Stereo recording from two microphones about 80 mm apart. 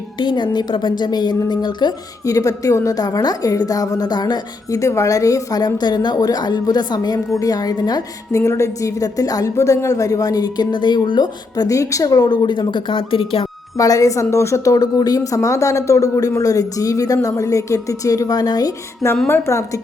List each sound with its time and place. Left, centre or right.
0.2 s a woman's voice: left
2.2 s a woman's voice: left
8.3 s a woman's voice: left
13.7 s a woman's voice: left
19.3 s a woman's voice: left